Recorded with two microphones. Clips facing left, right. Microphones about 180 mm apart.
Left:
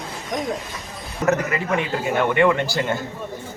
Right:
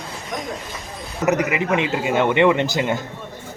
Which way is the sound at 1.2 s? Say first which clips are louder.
Right 2 dB; 15° right (ahead or behind).